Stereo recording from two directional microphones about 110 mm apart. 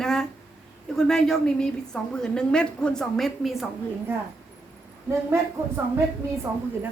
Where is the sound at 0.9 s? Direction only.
5° left (ahead or behind).